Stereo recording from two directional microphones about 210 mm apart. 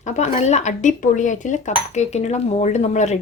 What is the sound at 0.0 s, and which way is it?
Speech, 35° left (ahead or behind).